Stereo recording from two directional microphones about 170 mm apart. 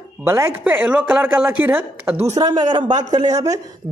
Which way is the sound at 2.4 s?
25° right (ahead or behind).